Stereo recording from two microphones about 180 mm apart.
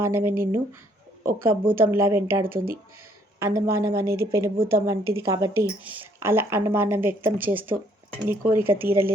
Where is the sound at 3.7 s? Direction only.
15° right (ahead or behind).